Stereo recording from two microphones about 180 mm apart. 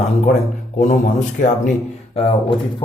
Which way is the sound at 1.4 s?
45° left (ahead or behind).